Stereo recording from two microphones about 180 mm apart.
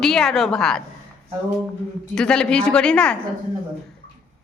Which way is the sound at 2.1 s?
5° left (ahead or behind).